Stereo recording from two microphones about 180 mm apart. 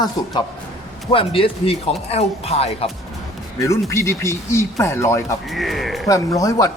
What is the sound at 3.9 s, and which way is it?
Speech, 15° left (ahead or behind).